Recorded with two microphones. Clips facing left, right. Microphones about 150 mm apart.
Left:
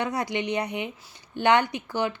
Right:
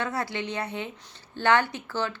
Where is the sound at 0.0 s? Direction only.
15° left (ahead or behind).